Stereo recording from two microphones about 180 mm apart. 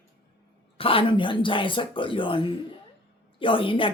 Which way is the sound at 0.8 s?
30° left (ahead or behind).